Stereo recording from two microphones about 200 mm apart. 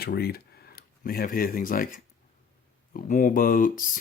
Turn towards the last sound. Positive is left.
turn(degrees=40)  # may be behind; listen again after turning